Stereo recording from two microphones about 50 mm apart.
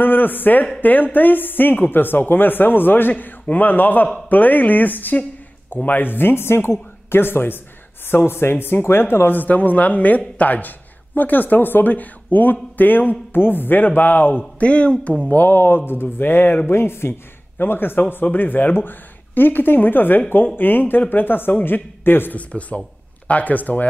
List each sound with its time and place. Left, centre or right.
0.0 s speech: left
9.4 s speech: left
14.6 s speech: left
15.2 s speech: left
16.7 s speech: left
17.6 s speech: left
22.5 s speech: left